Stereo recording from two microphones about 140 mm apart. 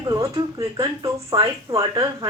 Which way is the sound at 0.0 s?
25° right (ahead or behind).